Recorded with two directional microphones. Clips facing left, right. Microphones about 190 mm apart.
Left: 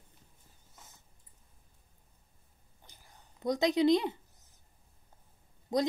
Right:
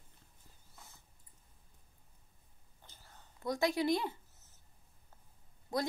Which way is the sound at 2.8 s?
15° left (ahead or behind).